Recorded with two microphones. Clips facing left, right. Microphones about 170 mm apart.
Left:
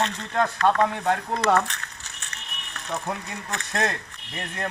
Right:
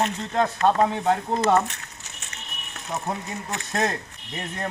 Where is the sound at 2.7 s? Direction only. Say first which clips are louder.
Right 1 dB; 20° right (ahead or behind).